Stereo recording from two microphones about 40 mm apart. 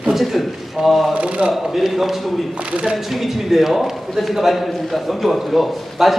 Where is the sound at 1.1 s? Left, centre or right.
Right.